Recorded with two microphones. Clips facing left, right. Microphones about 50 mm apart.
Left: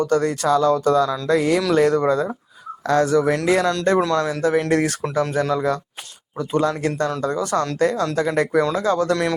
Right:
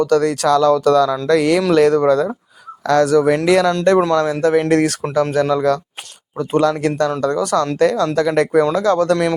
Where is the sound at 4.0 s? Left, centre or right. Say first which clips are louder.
Right 4 dB; right.